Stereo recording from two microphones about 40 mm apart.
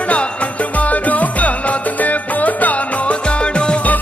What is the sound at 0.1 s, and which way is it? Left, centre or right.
Music, left.